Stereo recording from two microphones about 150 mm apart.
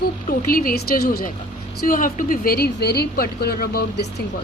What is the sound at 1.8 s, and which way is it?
A woman's voice, 65° left (ahead or behind).